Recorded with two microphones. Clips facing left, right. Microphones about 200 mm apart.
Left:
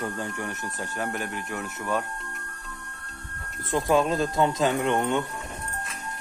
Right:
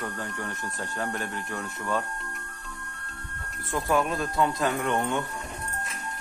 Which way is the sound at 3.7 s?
20° left (ahead or behind).